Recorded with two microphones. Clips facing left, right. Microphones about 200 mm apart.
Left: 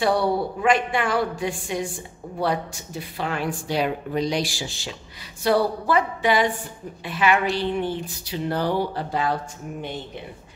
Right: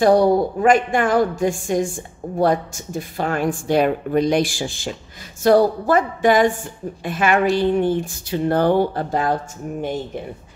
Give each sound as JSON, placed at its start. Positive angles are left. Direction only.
{"t": 0.0, "sound": "a woman's voice", "side_deg": -45}